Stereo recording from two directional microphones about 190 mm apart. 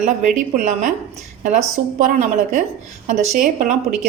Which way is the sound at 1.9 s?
40° right (ahead or behind).